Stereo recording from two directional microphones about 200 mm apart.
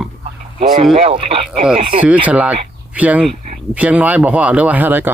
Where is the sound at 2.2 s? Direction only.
5° right (ahead or behind).